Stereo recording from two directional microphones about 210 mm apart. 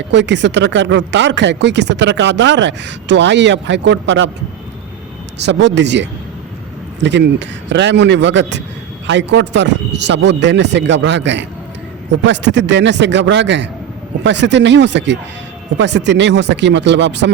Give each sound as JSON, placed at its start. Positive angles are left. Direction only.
{"t": 0.1, "sound": "speech", "side_deg": -55}
{"t": 5.4, "sound": "speech", "side_deg": -55}